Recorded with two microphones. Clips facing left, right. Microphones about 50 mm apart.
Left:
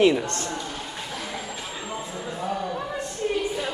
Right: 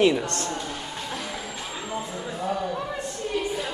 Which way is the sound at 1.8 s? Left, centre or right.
Centre.